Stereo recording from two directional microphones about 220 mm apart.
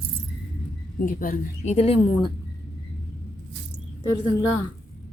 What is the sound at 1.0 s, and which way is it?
A woman's voice, 35° left (ahead or behind).